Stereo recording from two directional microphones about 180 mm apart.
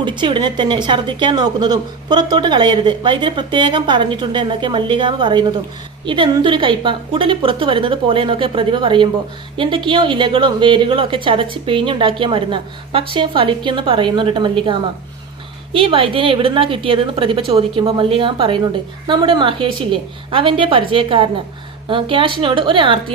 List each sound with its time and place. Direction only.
0.0 s a woman's voice: 25° right (ahead or behind)
15.7 s a woman's voice: 30° right (ahead or behind)